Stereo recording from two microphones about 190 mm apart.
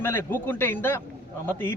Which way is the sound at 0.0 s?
10° left (ahead or behind).